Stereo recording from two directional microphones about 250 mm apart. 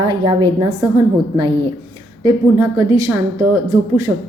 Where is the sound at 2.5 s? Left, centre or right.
Centre.